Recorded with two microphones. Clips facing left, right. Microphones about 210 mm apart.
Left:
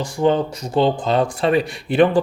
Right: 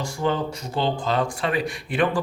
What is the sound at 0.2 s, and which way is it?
Speech, 20° left (ahead or behind).